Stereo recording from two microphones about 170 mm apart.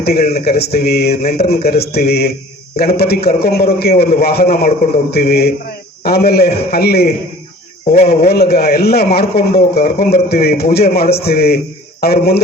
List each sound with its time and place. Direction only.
0.0 s a man's voice: 65° left (ahead or behind)
7.9 s speech: 45° left (ahead or behind)
8.3 s a man's voice: 65° left (ahead or behind)